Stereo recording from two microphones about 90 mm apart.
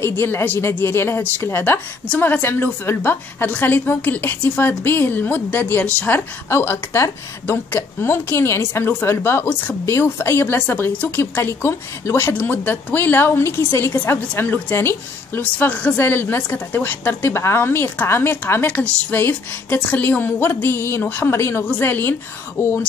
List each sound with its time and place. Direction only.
0.0 s a woman's voice: 25° left (ahead or behind)